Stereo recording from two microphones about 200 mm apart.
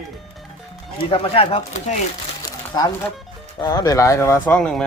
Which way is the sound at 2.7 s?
20° left (ahead or behind).